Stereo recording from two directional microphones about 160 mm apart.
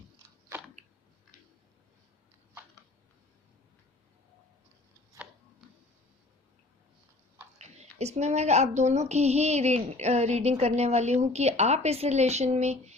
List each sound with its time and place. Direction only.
5.1 s tick-tock: 5° right (ahead or behind)
7.6 s a woman's voice: 45° right (ahead or behind)